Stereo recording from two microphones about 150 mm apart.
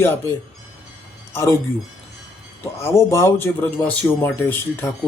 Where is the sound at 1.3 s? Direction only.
20° left (ahead or behind).